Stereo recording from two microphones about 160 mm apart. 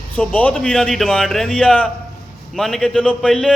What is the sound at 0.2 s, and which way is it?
A man's voice, 10° left (ahead or behind).